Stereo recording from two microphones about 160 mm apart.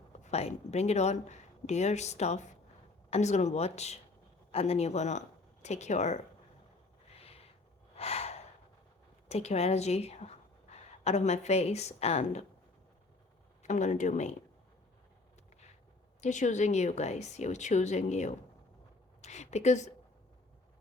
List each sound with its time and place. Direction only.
0.2 s speech: 40° left (ahead or behind)
7.2 s a sound: 40° left (ahead or behind)
7.9 s snort: 40° left (ahead or behind)
9.3 s a woman's voice: 40° left (ahead or behind)
13.6 s speech: 50° left (ahead or behind)
16.2 s a woman's voice: 50° left (ahead or behind)